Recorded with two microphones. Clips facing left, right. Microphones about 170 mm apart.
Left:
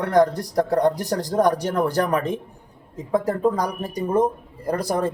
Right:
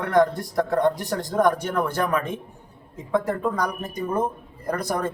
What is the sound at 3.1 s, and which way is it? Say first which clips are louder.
Speech: left 3 dB; 35° left (ahead or behind).